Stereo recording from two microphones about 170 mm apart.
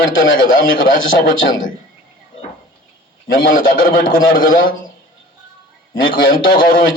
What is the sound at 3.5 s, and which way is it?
A man's voice, 55° left (ahead or behind).